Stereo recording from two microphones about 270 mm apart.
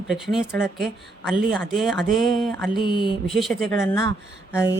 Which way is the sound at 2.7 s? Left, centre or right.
Centre.